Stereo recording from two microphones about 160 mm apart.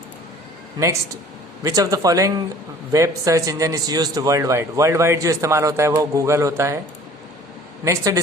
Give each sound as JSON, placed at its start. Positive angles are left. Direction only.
{"t": 1.6, "sound": "a man's voice", "side_deg": -20}
{"t": 7.9, "sound": "a man's voice", "side_deg": -20}